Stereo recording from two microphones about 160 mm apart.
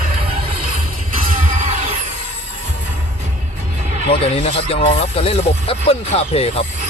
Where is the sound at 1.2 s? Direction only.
60° right (ahead or behind).